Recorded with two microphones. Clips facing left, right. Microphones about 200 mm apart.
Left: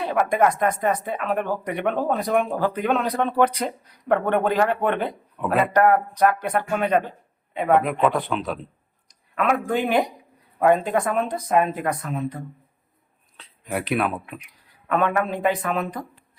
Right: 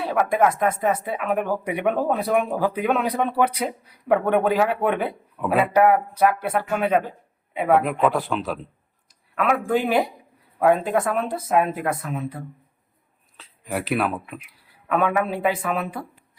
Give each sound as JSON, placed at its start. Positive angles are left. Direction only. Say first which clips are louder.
{"t": 0.0, "sound": "speech", "louder": "even", "side_deg": -5}